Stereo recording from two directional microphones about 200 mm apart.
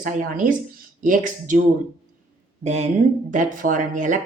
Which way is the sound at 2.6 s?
35° right (ahead or behind).